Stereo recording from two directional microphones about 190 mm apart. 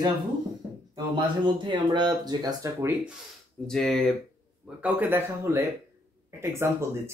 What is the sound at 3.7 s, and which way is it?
Speech, 5° left (ahead or behind).